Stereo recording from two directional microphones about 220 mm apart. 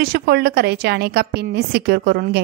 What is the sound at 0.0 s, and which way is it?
A woman's voice, 45° right (ahead or behind).